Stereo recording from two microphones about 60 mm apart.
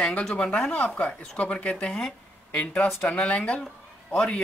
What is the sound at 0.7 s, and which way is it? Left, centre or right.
Speech, left.